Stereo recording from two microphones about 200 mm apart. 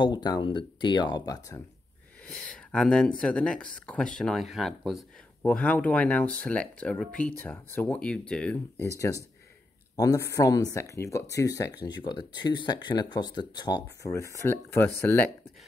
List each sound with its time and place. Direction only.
0.0 s speech: 20° left (ahead or behind)
2.2 s speech: 5° left (ahead or behind)
9.9 s speech: 15° left (ahead or behind)